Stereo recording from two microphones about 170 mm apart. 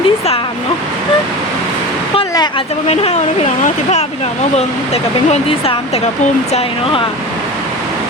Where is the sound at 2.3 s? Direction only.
25° left (ahead or behind).